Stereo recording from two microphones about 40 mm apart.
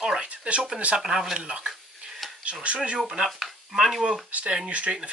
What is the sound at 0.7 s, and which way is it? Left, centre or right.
Speech, right.